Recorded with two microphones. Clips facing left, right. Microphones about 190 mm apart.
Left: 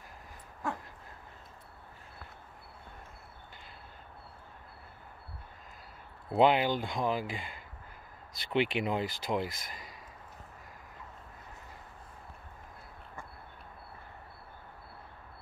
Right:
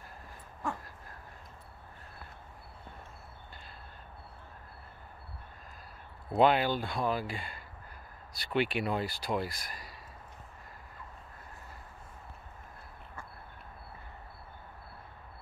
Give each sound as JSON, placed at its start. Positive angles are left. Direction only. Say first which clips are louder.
{"t": 6.3, "sound": "speech", "louder": "even", "side_deg": 20}